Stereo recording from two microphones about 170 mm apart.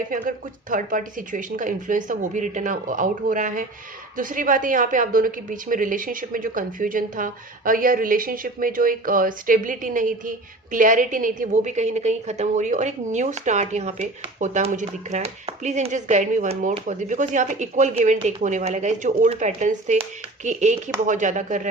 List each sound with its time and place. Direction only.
0.1 s a woman's voice: 50° right (ahead or behind)